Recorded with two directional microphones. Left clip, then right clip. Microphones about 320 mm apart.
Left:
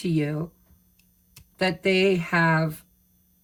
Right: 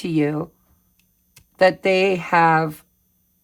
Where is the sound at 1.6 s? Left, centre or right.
Right.